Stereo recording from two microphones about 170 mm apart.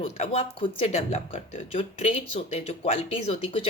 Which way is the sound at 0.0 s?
35° left (ahead or behind).